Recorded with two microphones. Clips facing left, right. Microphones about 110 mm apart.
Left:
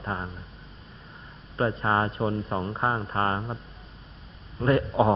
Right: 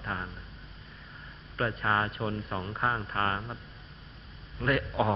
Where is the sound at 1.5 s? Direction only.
25° left (ahead or behind).